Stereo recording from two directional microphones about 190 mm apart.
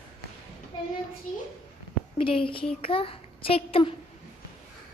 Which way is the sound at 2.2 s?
30° left (ahead or behind).